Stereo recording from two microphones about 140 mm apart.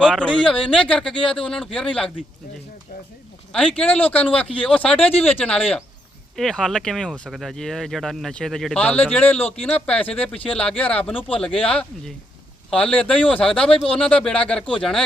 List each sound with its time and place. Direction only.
0.0 s speech: 5° left (ahead or behind)
3.5 s speech: 10° left (ahead or behind)
4.9 s speech: 45° left (ahead or behind)
5.2 s speech: 15° left (ahead or behind)
9.5 s speech: 45° left (ahead or behind)
9.8 s speech: 10° left (ahead or behind)
11.1 s speech: 40° left (ahead or behind)
11.3 s speech: 10° left (ahead or behind)